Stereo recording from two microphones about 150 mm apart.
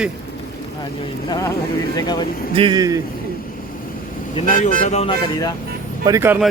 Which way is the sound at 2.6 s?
30° right (ahead or behind).